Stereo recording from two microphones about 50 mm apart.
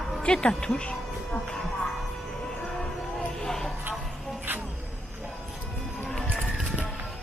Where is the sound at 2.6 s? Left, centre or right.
Centre.